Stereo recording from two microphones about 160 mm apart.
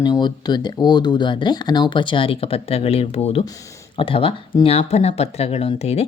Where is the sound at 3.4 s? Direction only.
20° left (ahead or behind).